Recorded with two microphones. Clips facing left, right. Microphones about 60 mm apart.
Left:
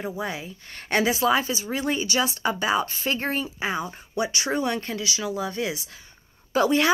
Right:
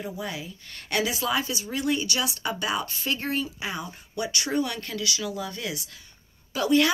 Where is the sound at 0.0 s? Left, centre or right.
Left.